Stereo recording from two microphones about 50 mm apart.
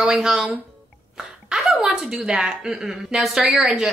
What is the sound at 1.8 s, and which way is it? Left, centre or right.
A woman's voice, centre.